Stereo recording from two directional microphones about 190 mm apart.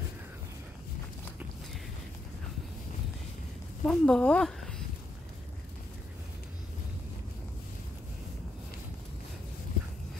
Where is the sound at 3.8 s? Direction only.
5° left (ahead or behind).